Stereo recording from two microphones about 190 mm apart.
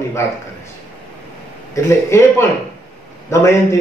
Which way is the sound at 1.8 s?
15° left (ahead or behind).